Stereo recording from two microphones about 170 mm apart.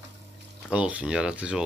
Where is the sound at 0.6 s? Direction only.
5° right (ahead or behind).